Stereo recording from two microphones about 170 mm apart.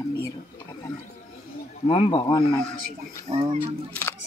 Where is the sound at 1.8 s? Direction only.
30° left (ahead or behind).